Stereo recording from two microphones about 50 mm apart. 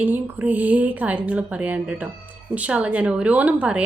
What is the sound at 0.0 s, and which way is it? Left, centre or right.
A woman's voice, right.